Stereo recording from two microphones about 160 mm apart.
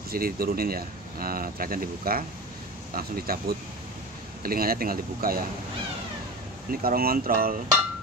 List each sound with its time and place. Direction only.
0.1 s speech: 70° right (ahead or behind)
6.7 s speech: 65° right (ahead or behind)